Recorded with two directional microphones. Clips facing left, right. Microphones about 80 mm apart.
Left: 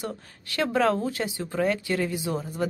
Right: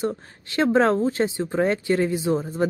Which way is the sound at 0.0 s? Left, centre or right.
Right.